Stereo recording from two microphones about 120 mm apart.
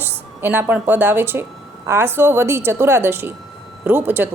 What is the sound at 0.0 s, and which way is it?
A woman's voice, 15° right (ahead or behind).